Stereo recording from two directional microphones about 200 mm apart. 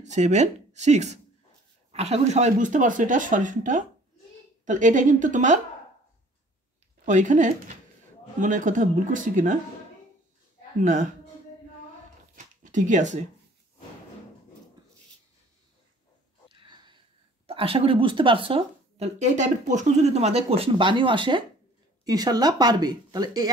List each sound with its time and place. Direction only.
0.0 s speech: 35° right (ahead or behind)
7.1 s speech: 40° right (ahead or behind)
10.8 s speech: 40° right (ahead or behind)
12.4 s zipper: 40° right (ahead or behind)
16.5 s sniff: 20° right (ahead or behind)
17.5 s speech: 25° right (ahead or behind)